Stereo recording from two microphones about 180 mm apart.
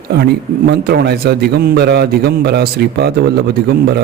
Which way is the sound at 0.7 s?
65° right (ahead or behind).